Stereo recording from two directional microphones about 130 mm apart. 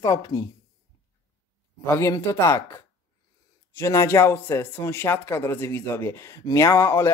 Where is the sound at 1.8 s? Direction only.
20° left (ahead or behind).